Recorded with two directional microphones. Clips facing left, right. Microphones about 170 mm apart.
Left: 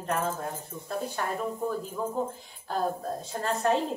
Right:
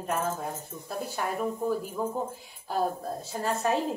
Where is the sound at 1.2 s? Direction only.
10° right (ahead or behind).